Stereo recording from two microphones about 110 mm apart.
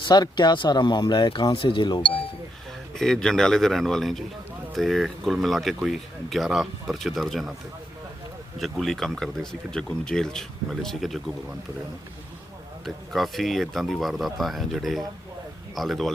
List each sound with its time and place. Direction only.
0.0 s speech: 40° left (ahead or behind)
2.9 s speech: 5° left (ahead or behind)
8.5 s speech: centre (ahead or behind)
12.8 s speech: centre (ahead or behind)